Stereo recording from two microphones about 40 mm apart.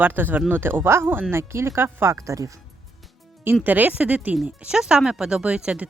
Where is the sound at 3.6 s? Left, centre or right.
Right.